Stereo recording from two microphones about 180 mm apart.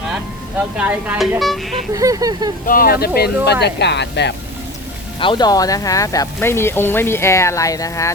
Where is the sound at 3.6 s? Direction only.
70° left (ahead or behind).